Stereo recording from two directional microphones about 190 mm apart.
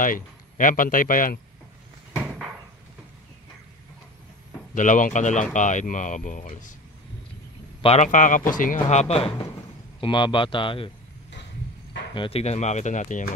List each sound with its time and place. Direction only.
0.0 s speech: 45° left (ahead or behind)
4.7 s speech: 40° left (ahead or behind)
7.8 s speech: 35° left (ahead or behind)
12.1 s speech: 30° left (ahead or behind)